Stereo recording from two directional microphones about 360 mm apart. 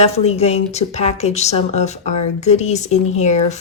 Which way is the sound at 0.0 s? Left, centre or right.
Centre.